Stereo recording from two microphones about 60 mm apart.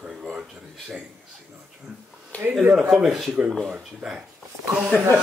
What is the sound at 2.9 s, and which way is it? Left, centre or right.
Speech, centre.